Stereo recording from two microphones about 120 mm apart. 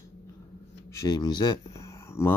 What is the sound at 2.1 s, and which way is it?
Speech, 20° left (ahead or behind).